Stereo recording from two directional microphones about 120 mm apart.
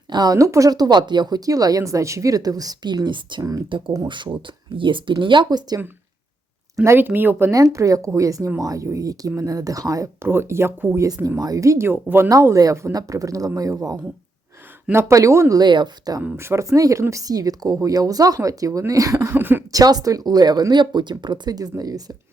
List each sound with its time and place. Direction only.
0.1 s speech: 35° right (ahead or behind)
6.8 s speech: 20° right (ahead or behind); by 16.2 s 35° right (ahead or behind)
16.2 s speech: 15° right (ahead or behind)
19.7 s speech: 30° right (ahead or behind)